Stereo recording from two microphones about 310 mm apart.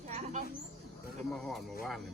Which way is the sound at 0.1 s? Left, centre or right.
Right.